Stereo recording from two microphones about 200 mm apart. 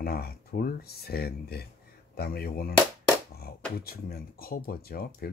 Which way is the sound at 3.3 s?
50° left (ahead or behind).